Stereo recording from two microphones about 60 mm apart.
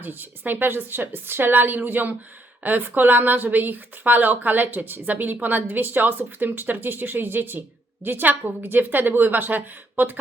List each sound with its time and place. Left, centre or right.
0.0 s a woman's voice: right